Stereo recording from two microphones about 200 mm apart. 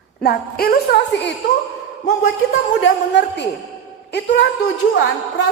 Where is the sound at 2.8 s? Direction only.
60° left (ahead or behind).